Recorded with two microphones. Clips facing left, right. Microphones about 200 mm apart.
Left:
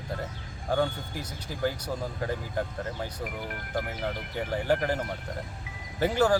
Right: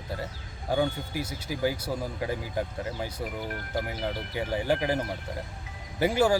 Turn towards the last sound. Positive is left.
turn(degrees=-10)  # may be behind; listen again after turning